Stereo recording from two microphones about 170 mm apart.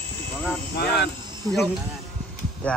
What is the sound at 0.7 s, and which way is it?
Speech, 70° left (ahead or behind).